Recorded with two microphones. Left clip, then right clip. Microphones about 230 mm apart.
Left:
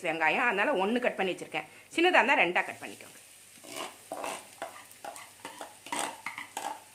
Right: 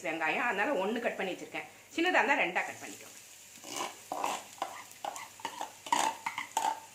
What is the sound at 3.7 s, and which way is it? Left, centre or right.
Stir, centre.